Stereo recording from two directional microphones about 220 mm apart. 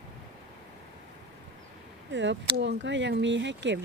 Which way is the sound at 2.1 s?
55° right (ahead or behind).